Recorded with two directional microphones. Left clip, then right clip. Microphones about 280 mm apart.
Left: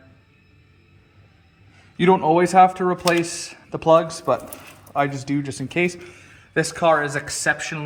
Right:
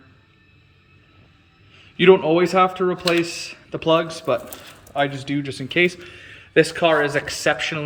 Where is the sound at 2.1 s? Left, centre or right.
Centre.